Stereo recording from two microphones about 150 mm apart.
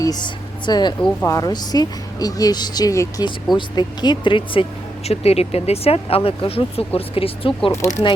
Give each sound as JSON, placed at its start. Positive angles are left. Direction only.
{"t": 0.0, "sound": "speech", "side_deg": 30}
{"t": 7.7, "sound": "speech", "side_deg": 20}